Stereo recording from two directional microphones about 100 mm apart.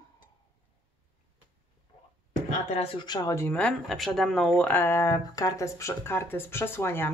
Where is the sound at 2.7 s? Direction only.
85° left.